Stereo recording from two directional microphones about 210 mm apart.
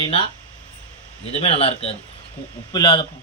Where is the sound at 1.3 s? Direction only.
30° left (ahead or behind).